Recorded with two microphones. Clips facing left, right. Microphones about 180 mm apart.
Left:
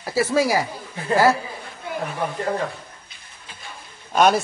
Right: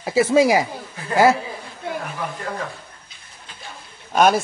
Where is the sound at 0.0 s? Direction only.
20° right (ahead or behind).